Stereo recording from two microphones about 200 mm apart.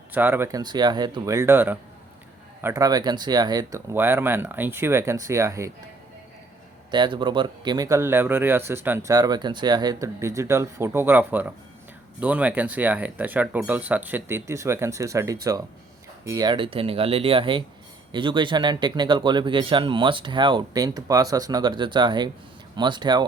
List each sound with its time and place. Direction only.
0.1 s speech: 10° right (ahead or behind)
6.9 s speech: 25° right (ahead or behind)